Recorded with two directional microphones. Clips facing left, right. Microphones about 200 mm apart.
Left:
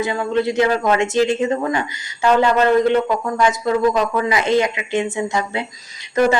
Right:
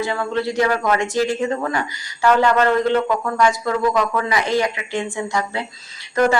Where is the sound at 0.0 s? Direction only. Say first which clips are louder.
Left 3 dB; 20° left (ahead or behind).